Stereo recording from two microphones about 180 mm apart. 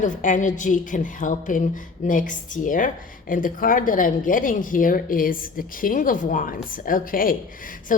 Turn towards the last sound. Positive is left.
turn(degrees=50)  # may be behind; listen again after turning